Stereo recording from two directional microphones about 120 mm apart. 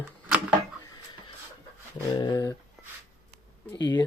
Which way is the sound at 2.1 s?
40° left (ahead or behind).